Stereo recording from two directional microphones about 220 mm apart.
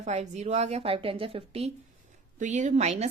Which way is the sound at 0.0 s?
30° right (ahead or behind).